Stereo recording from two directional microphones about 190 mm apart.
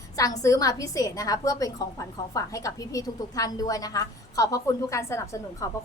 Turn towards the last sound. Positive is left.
turn(degrees=15)  # may be behind; listen again after turning